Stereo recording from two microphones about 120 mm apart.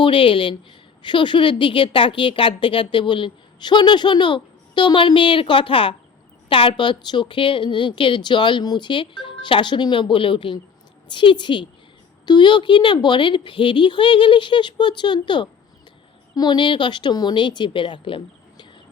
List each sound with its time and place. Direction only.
0.0 s speech: 45° left (ahead or behind)